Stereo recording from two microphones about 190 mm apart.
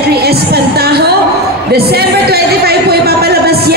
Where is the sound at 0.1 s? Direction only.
55° right (ahead or behind).